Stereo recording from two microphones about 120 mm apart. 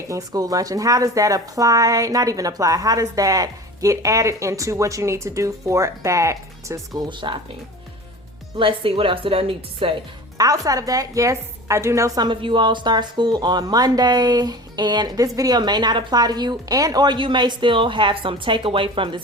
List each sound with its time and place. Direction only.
0.1 s speech: 30° right (ahead or behind)
7.1 s a woman's voice: 40° right (ahead or behind)
8.5 s speech: 45° right (ahead or behind)
10.3 s a woman's voice: 30° right (ahead or behind)